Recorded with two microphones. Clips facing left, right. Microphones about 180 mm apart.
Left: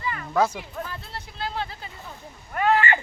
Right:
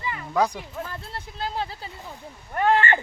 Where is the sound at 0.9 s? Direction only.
45° right (ahead or behind).